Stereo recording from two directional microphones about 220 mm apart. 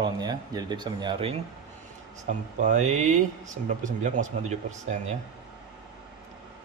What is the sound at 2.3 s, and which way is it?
Speech, 35° right (ahead or behind).